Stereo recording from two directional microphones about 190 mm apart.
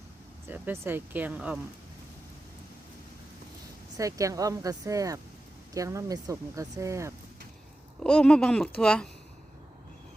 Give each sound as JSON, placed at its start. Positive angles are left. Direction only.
{"t": 0.4, "sound": "speech", "side_deg": -10}
{"t": 3.9, "sound": "speech", "side_deg": -15}
{"t": 8.0, "sound": "speech", "side_deg": 5}